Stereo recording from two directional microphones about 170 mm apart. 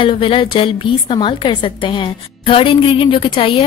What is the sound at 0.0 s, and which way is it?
A woman's voice, 30° left (ahead or behind).